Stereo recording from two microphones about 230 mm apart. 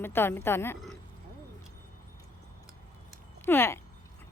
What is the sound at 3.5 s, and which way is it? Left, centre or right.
Speech, centre.